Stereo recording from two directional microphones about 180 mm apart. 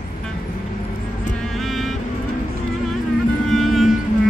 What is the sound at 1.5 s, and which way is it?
Music, centre (ahead or behind).